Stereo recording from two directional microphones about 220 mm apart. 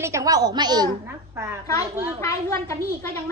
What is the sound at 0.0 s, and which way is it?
A woman's voice, 15° right (ahead or behind).